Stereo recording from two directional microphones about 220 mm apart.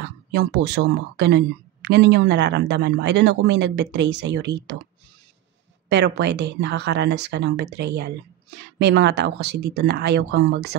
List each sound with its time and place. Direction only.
0.3 s speech: 45° right (ahead or behind)
5.9 s speech: 50° right (ahead or behind)